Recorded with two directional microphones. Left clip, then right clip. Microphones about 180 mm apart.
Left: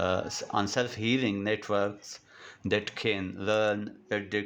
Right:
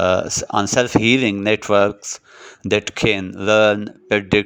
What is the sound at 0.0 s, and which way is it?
Speech, 40° right (ahead or behind).